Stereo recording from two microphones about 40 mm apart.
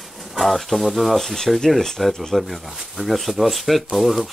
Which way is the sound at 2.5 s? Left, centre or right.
Centre.